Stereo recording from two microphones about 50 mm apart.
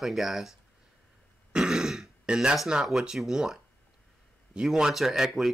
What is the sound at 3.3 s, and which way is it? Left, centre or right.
Speech, centre.